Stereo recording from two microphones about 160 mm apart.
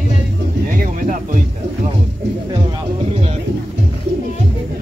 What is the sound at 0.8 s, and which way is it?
Music, 55° right (ahead or behind).